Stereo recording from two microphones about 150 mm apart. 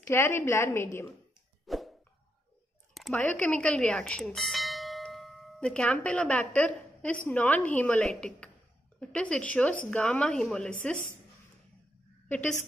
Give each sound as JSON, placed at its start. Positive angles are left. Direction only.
{"t": 0.1, "sound": "speech", "side_deg": 15}
{"t": 1.7, "sound": "a sound", "side_deg": 0}
{"t": 2.9, "sound": "speech", "side_deg": 0}
{"t": 12.3, "sound": "a woman's voice", "side_deg": 10}